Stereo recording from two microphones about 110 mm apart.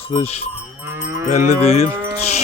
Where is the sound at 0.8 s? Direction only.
25° right (ahead or behind).